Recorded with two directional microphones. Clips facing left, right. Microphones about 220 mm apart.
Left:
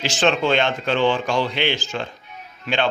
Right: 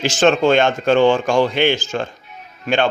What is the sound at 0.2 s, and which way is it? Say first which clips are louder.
Speech: right 5 dB; 45° right (ahead or behind).